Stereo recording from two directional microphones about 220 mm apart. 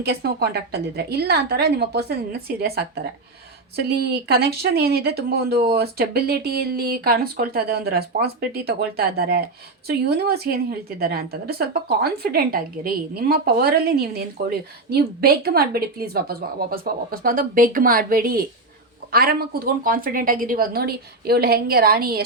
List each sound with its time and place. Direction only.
0.0 s speech: 45° right (ahead or behind)